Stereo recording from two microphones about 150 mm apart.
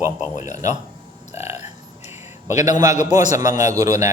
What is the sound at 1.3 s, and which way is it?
Burping, 20° right (ahead or behind).